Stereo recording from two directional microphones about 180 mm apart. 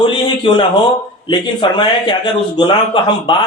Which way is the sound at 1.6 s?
25° left (ahead or behind).